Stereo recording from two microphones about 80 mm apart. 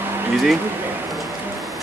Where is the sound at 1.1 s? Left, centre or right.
Centre.